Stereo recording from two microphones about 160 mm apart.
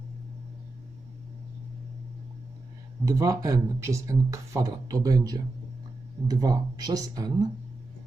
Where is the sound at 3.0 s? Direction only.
20° right (ahead or behind).